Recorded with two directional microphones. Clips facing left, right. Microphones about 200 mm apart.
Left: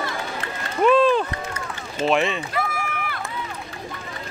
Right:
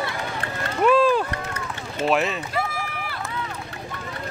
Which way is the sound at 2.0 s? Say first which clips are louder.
Left 1 dB; 5° right (ahead or behind).